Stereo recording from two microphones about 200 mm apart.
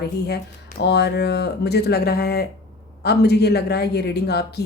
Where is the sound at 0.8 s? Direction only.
55° left (ahead or behind).